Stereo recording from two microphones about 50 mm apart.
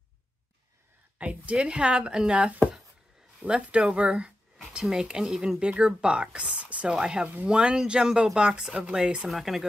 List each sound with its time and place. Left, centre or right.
1.1 s a woman's voice: right
5.0 s speech: centre
5.6 s a woman's voice: centre
6.9 s speech: centre
9.3 s speech: centre